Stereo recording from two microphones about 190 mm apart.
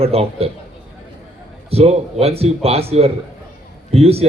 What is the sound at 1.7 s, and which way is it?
A man's voice, 35° right (ahead or behind).